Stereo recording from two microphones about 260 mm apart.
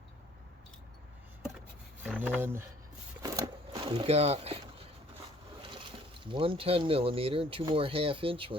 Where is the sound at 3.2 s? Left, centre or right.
Centre.